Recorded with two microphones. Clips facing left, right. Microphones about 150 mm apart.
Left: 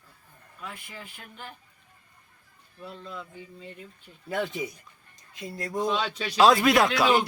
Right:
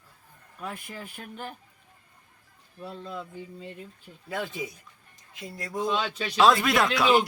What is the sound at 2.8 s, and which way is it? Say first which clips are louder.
Speech: right 3 dB; 35° right (ahead or behind).